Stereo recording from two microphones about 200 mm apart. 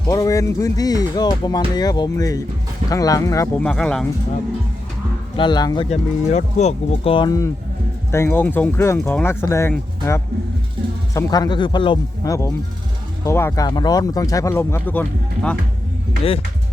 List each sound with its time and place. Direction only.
0.1 s music: 15° left (ahead or behind)
3.6 s speech: 5° left (ahead or behind)
5.4 s speech: 20° left (ahead or behind)
8.1 s music: 10° left (ahead or behind)
11.1 s speech: 20° left (ahead or behind)
13.2 s music: 15° left (ahead or behind)